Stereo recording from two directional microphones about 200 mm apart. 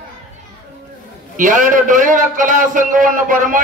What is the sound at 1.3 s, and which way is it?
A man's voice, 40° right (ahead or behind).